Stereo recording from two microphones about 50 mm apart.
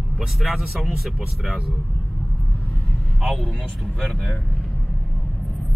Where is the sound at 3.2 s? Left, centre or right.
Centre.